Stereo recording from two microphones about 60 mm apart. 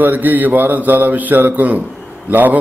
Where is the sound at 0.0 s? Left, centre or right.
Right.